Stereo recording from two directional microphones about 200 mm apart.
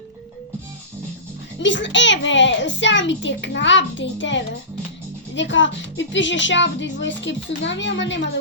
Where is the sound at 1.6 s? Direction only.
65° left (ahead or behind).